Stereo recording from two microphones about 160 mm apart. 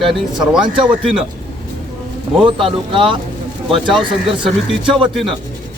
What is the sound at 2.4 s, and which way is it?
Speech, 30° right (ahead or behind).